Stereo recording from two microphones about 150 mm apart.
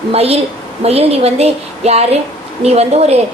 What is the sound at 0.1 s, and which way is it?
A woman's voice, 40° right (ahead or behind).